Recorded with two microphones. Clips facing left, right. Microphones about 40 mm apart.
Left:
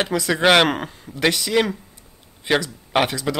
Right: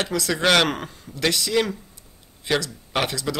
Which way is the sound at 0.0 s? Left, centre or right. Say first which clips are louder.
Left 4 dB; left.